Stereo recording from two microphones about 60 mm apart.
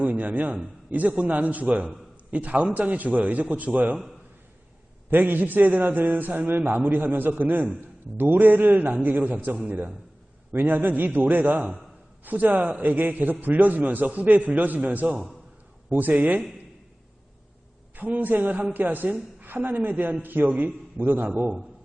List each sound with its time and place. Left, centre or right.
0.0 s a man's voice: right
5.1 s a man's voice: right
17.9 s a man's voice: right